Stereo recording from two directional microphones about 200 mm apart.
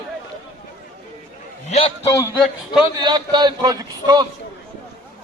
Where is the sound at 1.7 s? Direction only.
30° left (ahead or behind).